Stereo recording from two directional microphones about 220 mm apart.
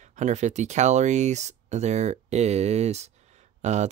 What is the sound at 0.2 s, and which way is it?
Speech, 30° right (ahead or behind).